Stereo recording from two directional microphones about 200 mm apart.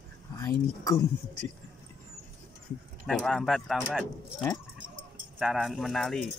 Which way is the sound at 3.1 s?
Centre (ahead or behind).